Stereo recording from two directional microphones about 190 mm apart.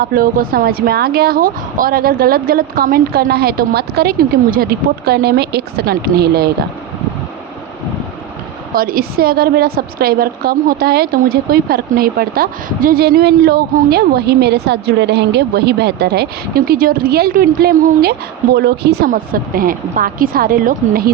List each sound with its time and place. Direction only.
0.0 s a woman's voice: 50° right (ahead or behind)
8.7 s a woman's voice: 50° right (ahead or behind)